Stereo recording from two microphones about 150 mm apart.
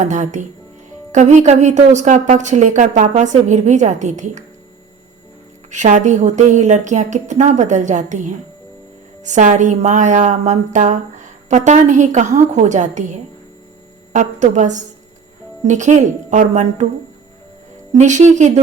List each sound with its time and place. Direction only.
0.0 s a woman's voice: 55° right (ahead or behind)
5.7 s a woman's voice: 55° right (ahead or behind)
17.9 s a woman's voice: 55° right (ahead or behind)